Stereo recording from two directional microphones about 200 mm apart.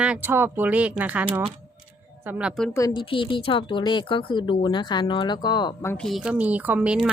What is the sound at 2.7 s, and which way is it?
Speech, 15° left (ahead or behind).